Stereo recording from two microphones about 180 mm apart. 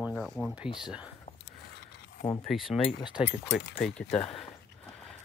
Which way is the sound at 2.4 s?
Centre (ahead or behind).